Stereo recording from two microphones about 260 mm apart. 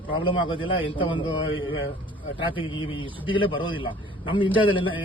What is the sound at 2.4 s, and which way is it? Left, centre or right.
A man's voice, centre.